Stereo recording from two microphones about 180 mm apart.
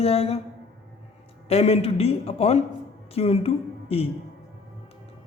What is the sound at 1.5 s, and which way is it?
A man's voice, 35° left (ahead or behind).